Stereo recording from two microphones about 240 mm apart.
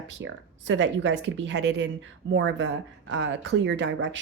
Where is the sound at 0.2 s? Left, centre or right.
Right.